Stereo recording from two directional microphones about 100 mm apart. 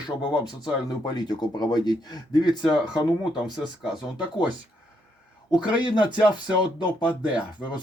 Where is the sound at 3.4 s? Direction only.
5° right (ahead or behind).